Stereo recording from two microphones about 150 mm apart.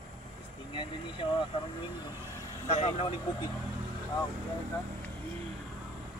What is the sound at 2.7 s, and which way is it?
Speech, 40° left (ahead or behind).